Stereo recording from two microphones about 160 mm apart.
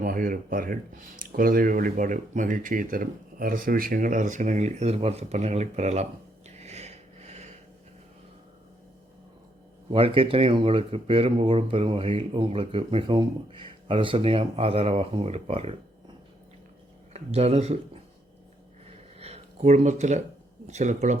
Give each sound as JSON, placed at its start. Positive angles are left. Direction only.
{"t": 0.0, "sound": "speech", "side_deg": -60}
{"t": 6.6, "sound": "a sound", "side_deg": -40}
{"t": 9.9, "sound": "speech", "side_deg": -35}
{"t": 17.1, "sound": "speech", "side_deg": -40}
{"t": 19.2, "sound": "speech", "side_deg": -45}